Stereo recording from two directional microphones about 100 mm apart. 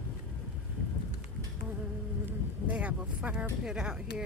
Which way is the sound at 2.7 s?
10° right (ahead or behind).